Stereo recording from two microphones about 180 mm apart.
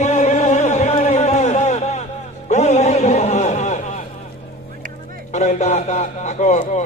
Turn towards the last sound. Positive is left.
turn(degrees=40)  # may be behind; listen again after turning